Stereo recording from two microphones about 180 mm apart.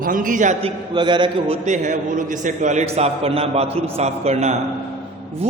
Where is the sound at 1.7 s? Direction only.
45° right (ahead or behind).